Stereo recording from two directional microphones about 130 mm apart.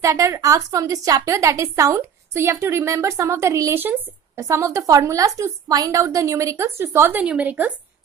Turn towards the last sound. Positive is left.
turn(degrees=-10)  # may be behind; listen again after turning